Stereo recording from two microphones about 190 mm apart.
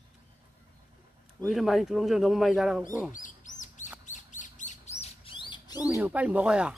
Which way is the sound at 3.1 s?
45° left (ahead or behind).